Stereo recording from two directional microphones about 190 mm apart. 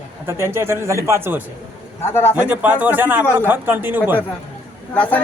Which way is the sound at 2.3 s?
10° right (ahead or behind).